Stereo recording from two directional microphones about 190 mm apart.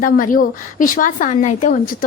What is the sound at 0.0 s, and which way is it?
Speech, 45° left (ahead or behind).